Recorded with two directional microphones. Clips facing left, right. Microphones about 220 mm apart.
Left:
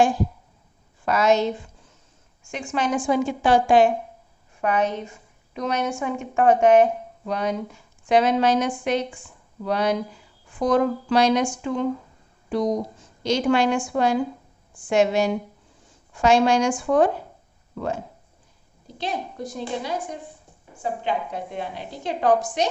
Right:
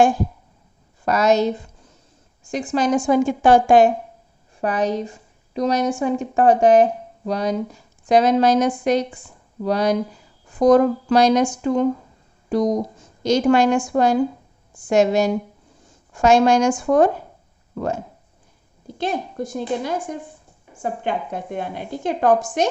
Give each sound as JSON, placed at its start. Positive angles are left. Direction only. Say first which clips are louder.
{"t": 1.0, "sound": "a woman's voice", "louder": "right 3 dB", "side_deg": -40}